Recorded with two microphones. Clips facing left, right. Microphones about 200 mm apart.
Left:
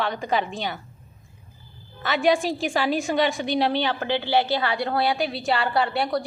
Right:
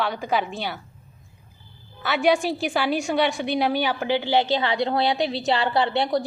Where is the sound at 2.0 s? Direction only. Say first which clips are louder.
Even; centre (ahead or behind); by 6.3 s 25° right (ahead or behind).